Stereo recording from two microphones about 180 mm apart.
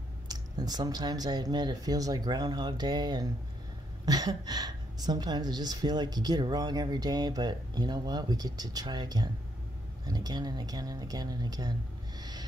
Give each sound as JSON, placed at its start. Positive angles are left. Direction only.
{"t": 0.3, "sound": "a woman's voice", "side_deg": -20}
{"t": 12.2, "sound": "music", "side_deg": -20}